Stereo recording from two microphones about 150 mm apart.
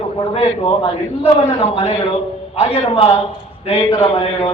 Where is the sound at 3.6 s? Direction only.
35° left (ahead or behind).